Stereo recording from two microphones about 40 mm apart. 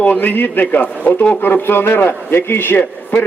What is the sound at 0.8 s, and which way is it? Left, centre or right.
Speech, left.